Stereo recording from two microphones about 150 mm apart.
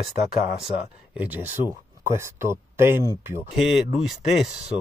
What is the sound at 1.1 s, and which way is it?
Speech, 10° right (ahead or behind).